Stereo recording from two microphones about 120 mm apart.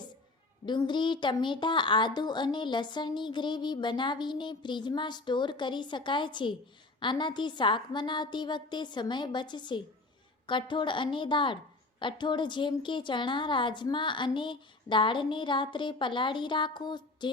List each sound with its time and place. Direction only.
0.6 s a child's voice: 40° left (ahead or behind)